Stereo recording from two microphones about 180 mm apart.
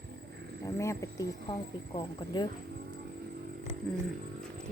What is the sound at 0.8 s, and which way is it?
Speech, 15° left (ahead or behind).